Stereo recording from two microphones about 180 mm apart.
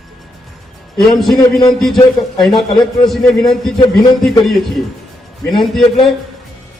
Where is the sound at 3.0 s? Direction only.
Centre (ahead or behind).